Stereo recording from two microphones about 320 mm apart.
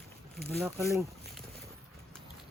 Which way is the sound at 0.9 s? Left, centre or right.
Centre.